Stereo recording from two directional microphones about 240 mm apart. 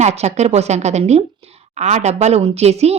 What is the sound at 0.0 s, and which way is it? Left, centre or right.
A woman's voice, right.